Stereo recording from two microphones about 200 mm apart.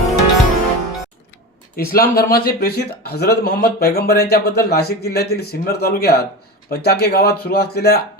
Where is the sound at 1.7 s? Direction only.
50° left (ahead or behind).